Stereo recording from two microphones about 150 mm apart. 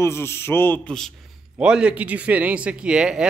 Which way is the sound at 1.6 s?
5° right (ahead or behind).